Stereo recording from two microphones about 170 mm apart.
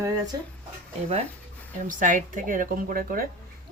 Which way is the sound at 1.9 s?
50° right (ahead or behind).